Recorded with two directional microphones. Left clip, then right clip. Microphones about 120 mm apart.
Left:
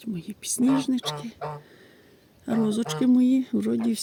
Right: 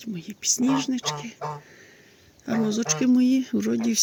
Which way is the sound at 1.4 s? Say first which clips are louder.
Right 2 dB; 75° right (ahead or behind).